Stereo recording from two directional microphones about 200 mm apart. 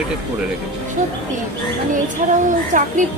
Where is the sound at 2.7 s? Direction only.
40° right (ahead or behind).